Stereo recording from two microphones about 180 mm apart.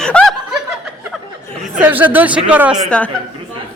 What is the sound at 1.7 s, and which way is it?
A man's voice, 10° right (ahead or behind).